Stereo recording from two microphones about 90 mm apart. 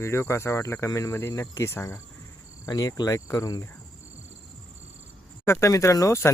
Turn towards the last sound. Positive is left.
turn(degrees=35)  # may be behind; listen again after turning